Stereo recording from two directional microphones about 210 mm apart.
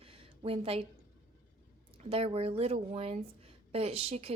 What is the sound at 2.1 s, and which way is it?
Speech, 25° right (ahead or behind).